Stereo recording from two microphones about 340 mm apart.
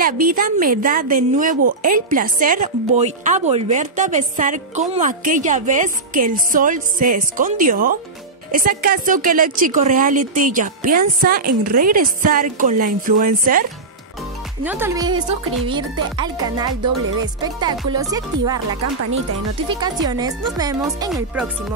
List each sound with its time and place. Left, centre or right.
0.0 s a woman's voice: right
14.6 s speech: centre
19.7 s speech: centre